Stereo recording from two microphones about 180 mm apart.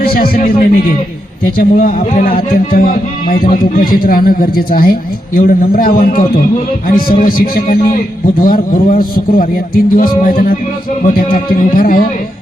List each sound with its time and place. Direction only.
0.0 s a man's voice: 55° left (ahead or behind)
11.8 s a man's voice: 50° left (ahead or behind)